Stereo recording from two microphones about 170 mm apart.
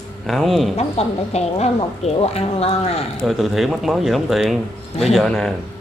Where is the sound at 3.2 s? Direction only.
Centre (ahead or behind).